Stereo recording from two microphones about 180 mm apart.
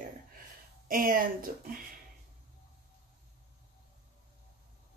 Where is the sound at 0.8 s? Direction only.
50° right (ahead or behind).